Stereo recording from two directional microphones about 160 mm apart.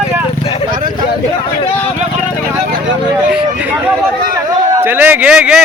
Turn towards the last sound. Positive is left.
turn(degrees=-5)  # may be behind; listen again after turning